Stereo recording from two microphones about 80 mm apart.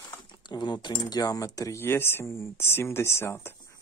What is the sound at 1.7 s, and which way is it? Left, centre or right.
Speech, left.